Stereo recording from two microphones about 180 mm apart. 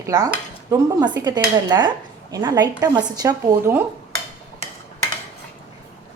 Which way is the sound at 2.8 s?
20° right (ahead or behind).